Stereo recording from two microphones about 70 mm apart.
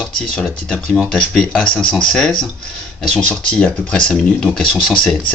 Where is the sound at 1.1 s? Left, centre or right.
Centre.